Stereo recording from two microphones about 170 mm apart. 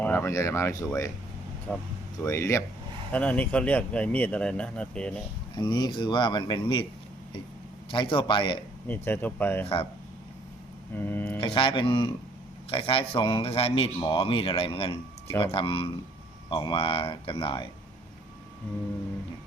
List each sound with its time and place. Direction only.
0.0 s speech: 10° left (ahead or behind)
1.7 s speech: centre (ahead or behind)
2.1 s speech: 15° left (ahead or behind)
5.5 s speech: 25° left (ahead or behind)
7.9 s speech: 30° left (ahead or behind)
8.9 s speech: 10° left (ahead or behind)
10.9 s speech: 10° left (ahead or behind)
11.3 s a man's voice: 30° left (ahead or behind)